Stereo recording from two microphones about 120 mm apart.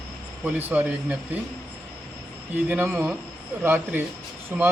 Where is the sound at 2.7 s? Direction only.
10° right (ahead or behind).